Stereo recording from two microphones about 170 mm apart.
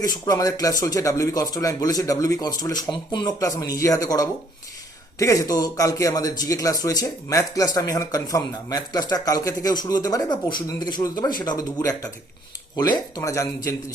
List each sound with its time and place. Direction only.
0.0 s speech: 20° left (ahead or behind)